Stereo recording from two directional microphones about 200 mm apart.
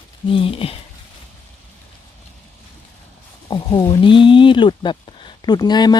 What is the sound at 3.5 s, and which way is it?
Speech, 20° left (ahead or behind).